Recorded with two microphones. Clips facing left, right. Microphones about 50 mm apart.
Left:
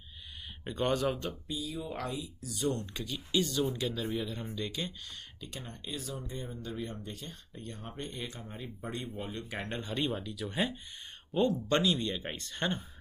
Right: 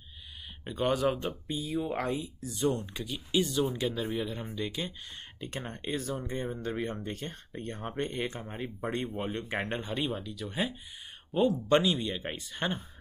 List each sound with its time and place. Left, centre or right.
0.7 s speech: centre
1.5 s speech: right
2.9 s speech: centre
5.4 s speech: right
9.8 s speech: centre